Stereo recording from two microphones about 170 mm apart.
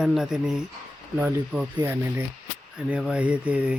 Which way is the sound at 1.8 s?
15° right (ahead or behind).